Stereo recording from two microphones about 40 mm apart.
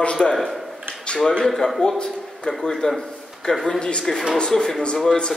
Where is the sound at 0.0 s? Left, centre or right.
Centre.